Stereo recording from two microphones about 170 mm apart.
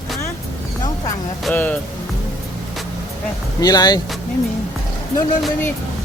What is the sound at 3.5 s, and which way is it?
Speech, 20° left (ahead or behind).